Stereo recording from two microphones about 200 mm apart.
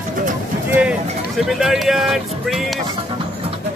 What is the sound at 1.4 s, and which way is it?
Speech, centre (ahead or behind).